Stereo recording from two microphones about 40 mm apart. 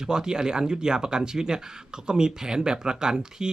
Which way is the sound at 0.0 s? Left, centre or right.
Centre.